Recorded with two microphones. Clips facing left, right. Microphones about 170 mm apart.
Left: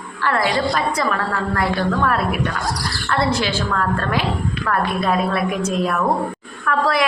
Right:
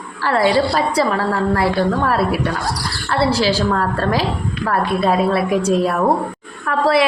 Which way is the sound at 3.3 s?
35° right (ahead or behind).